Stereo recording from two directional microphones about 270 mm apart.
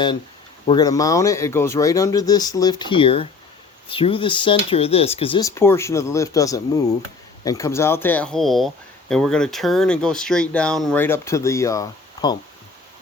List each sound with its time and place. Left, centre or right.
0.7 s speech: centre